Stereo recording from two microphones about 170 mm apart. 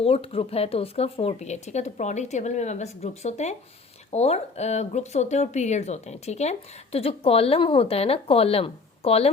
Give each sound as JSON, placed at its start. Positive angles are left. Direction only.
{"t": 0.0, "sound": "speech", "side_deg": 35}